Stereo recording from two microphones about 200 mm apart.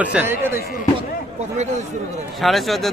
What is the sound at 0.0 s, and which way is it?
Speech, 5° right (ahead or behind).